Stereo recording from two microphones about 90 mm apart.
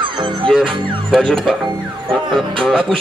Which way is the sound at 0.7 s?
Centre (ahead or behind).